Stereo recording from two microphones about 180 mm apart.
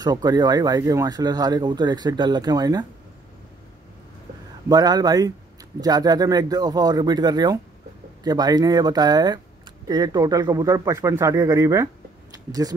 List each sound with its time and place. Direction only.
0.0 s speech: 20° right (ahead or behind)
4.6 s speech: 20° right (ahead or behind)